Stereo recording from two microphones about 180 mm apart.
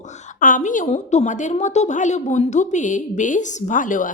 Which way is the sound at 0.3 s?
45° left (ahead or behind).